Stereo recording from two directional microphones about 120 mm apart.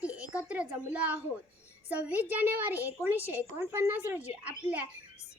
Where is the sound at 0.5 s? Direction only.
10° right (ahead or behind).